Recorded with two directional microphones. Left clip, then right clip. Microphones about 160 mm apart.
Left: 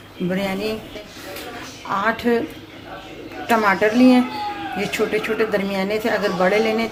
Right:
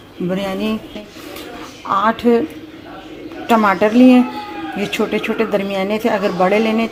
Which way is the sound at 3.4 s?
30° right (ahead or behind).